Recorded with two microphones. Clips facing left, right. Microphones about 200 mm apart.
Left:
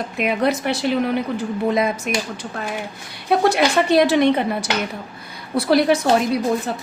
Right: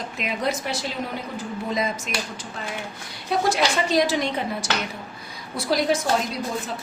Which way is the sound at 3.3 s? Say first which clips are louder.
Left 5 dB; 60° left (ahead or behind).